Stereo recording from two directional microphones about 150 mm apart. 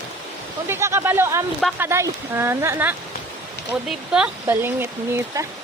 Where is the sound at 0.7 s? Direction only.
15° right (ahead or behind).